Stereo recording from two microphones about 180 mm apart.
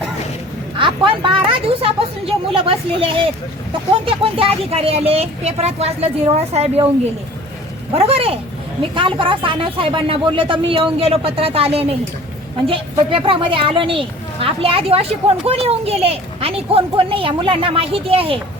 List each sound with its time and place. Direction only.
0.8 s a sound: 30° right (ahead or behind)
1.5 s a woman's voice: 30° right (ahead or behind)
7.9 s a woman's voice: 35° right (ahead or behind)